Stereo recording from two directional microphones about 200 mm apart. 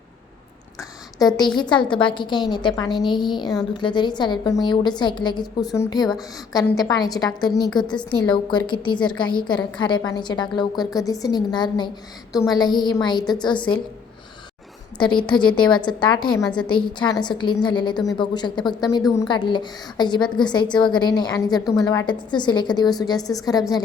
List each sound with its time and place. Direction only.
1.4 s a woman's voice: 20° left (ahead or behind)
14.9 s a woman's voice: 25° left (ahead or behind)